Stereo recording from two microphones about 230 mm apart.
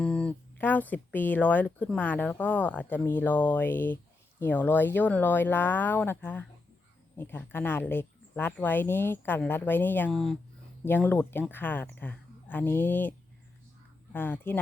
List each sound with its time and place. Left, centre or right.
0.0 s speech: centre